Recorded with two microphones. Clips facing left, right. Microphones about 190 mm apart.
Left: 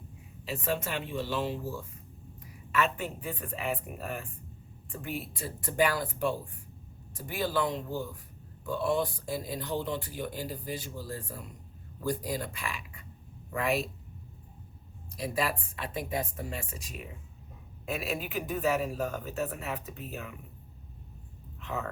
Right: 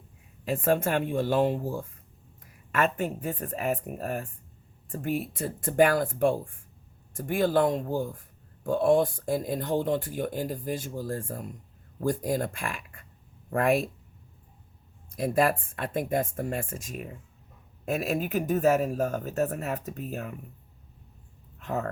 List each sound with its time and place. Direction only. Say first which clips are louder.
0.4 s speech: right 8 dB; 50° right (ahead or behind)
15.1 s speech: right 7 dB; 50° right (ahead or behind)
21.6 s speech: right 5 dB; 45° right (ahead or behind)